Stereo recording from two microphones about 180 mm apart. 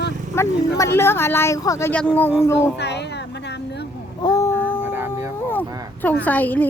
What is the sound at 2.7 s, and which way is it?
Speech, 70° left (ahead or behind).